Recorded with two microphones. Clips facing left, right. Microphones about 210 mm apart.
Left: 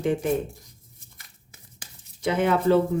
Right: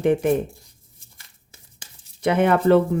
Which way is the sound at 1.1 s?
30° right (ahead or behind).